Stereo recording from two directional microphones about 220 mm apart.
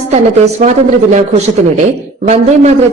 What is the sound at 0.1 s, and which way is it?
Speech, 30° right (ahead or behind).